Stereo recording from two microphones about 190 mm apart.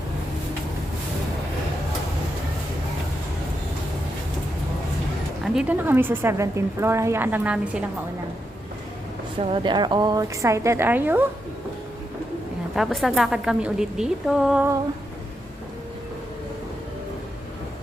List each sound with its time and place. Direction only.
5.4 s a woman's voice: 5° right (ahead or behind)
9.4 s a woman's voice: 25° right (ahead or behind); by 11.2 s 10° right (ahead or behind)
12.7 s a woman's voice: centre (ahead or behind)